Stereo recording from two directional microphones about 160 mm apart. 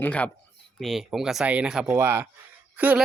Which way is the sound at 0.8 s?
Centre (ahead or behind).